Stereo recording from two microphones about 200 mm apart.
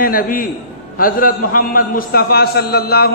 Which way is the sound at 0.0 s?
45° left (ahead or behind).